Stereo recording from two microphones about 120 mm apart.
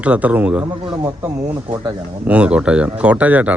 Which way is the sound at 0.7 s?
35° right (ahead or behind).